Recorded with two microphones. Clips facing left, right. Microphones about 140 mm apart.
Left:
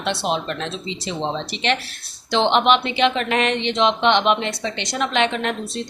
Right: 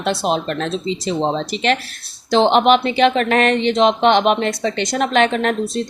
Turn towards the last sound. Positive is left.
turn(degrees=-45)  # may be behind; listen again after turning